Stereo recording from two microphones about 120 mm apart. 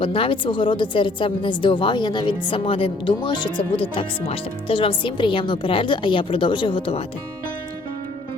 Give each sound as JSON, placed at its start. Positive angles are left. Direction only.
{"t": 0.0, "sound": "speech", "side_deg": 50}